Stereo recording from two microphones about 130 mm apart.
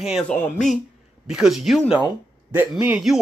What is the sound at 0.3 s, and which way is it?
Speech, 15° left (ahead or behind).